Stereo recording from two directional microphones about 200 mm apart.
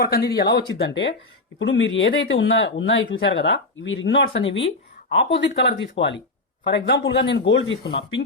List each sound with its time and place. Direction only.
0.0 s speech: 50° left (ahead or behind)